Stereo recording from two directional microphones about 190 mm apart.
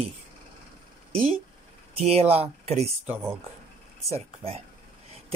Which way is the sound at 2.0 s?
30° right (ahead or behind).